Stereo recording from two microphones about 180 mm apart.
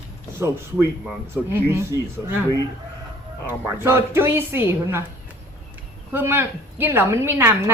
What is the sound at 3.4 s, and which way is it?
A woman's voice, 10° right (ahead or behind).